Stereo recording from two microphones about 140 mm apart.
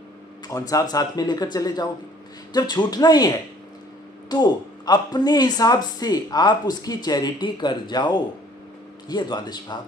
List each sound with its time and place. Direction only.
0.5 s speech: 25° left (ahead or behind)